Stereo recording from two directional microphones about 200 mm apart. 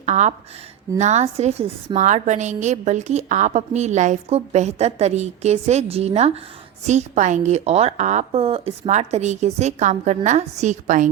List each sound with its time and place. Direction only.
0.0 s a woman's voice: 35° right (ahead or behind)